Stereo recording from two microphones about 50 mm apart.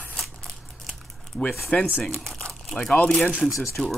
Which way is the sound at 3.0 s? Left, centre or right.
Left.